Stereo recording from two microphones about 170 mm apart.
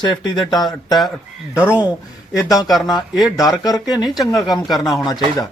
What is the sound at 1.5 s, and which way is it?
Speech, 10° right (ahead or behind).